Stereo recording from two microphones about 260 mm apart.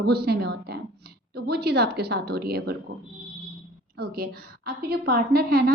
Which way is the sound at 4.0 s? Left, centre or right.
Right.